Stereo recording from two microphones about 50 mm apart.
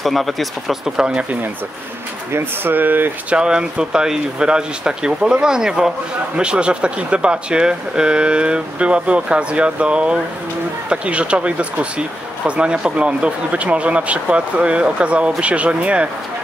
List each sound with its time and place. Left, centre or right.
0.0 s speech: centre
0.9 s speech: centre
2.3 s speech: right
3.3 s speech: centre